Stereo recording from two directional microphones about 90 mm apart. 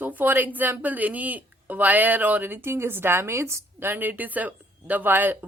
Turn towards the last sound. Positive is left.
turn(degrees=-20)  # may be behind; listen again after turning